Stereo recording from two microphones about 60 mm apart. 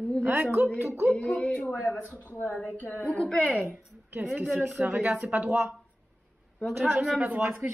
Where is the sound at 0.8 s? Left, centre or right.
Right.